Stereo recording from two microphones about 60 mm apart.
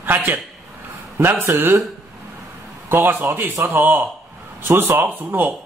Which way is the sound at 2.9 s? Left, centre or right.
Right.